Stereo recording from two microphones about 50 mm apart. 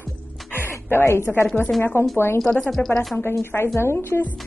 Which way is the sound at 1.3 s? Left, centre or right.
Centre.